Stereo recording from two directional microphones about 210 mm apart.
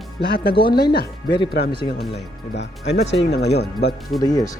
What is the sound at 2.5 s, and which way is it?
Speech, 55° left (ahead or behind).